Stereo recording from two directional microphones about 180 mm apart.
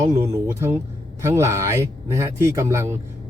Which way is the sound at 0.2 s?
15° right (ahead or behind).